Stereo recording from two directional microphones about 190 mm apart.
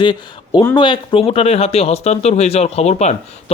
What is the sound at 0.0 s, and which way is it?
Speech, 25° left (ahead or behind).